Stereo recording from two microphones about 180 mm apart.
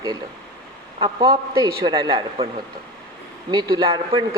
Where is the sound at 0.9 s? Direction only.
25° right (ahead or behind).